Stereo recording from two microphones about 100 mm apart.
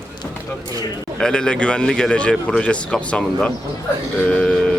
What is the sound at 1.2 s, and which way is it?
A man's voice, 10° left (ahead or behind).